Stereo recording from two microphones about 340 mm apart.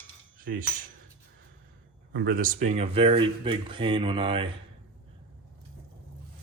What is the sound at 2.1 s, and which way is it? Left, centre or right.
Speech, right.